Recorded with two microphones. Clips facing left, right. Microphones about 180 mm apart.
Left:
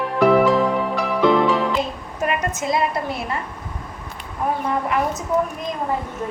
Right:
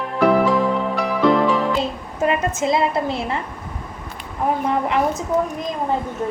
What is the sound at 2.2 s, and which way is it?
A woman's voice, 25° right (ahead or behind).